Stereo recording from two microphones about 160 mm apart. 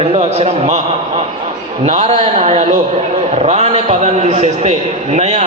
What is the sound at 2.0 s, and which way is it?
A man's voice, 35° right (ahead or behind).